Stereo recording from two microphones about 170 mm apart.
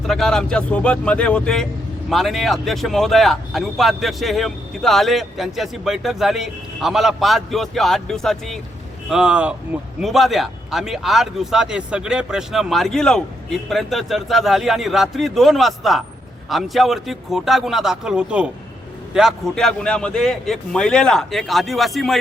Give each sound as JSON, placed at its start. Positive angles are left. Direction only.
{"t": 0.1, "sound": "speech", "side_deg": 0}